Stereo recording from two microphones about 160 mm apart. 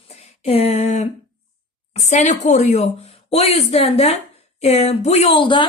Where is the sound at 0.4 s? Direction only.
40° left (ahead or behind).